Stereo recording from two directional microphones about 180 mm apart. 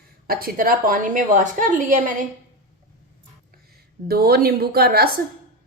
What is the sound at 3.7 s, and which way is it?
Speech, 60° right (ahead or behind).